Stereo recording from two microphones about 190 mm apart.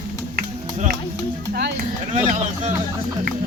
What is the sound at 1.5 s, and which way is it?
Clip-clop, 60° right (ahead or behind).